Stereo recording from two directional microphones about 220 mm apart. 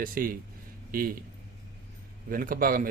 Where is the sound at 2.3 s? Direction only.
40° right (ahead or behind).